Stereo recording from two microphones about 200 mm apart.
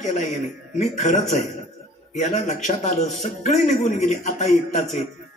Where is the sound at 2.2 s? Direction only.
35° left (ahead or behind).